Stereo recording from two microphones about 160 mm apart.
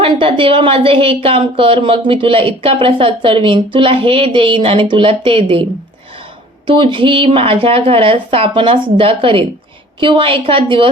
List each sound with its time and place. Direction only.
0.0 s a woman's voice: 35° right (ahead or behind)
6.7 s a woman's voice: 30° right (ahead or behind)